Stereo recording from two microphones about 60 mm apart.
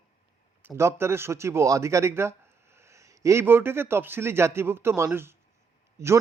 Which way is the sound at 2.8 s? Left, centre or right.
Right.